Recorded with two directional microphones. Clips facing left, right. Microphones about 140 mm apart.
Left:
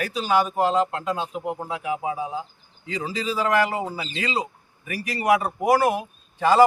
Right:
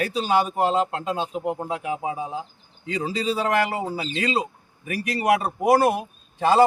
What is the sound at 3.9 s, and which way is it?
Speech, 40° right (ahead or behind).